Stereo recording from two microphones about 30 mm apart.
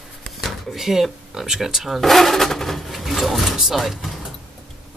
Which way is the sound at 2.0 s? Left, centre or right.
Centre.